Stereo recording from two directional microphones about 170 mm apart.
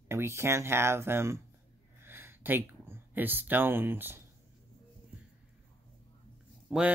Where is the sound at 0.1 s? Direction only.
15° right (ahead or behind).